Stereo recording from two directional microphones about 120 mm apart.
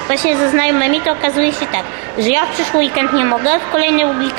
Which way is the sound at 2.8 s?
15° right (ahead or behind).